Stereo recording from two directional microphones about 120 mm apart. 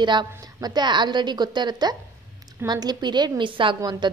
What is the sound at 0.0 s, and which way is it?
A woman's voice, 40° right (ahead or behind).